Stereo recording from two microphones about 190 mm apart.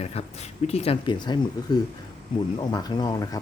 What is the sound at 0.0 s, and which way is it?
Speech, 35° left (ahead or behind).